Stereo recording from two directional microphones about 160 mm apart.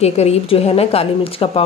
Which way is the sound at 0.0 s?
40° left (ahead or behind).